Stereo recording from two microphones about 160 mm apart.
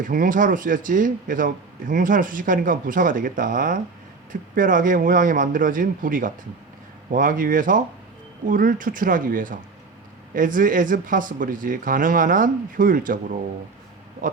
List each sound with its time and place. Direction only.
0.0 s speech: 60° right (ahead or behind)